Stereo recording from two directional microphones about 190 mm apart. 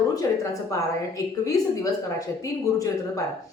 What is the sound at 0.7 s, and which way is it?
A woman's voice, 15° left (ahead or behind).